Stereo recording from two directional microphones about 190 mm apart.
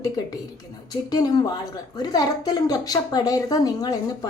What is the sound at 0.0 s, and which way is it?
Speech, 20° left (ahead or behind).